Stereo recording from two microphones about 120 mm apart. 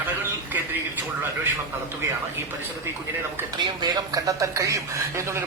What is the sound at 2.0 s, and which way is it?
Speech, 25° right (ahead or behind).